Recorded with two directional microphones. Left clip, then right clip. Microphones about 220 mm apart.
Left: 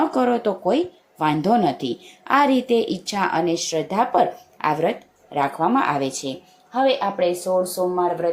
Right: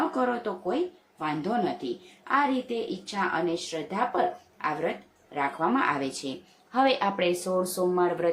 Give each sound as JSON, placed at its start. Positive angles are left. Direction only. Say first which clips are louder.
{"t": 0.2, "sound": "a woman's voice", "louder": "left 8 dB", "side_deg": 20}
{"t": 6.7, "sound": "speech", "louder": "left 5 dB", "side_deg": 0}